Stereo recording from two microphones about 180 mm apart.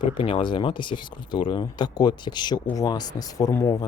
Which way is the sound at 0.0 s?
30° left (ahead or behind).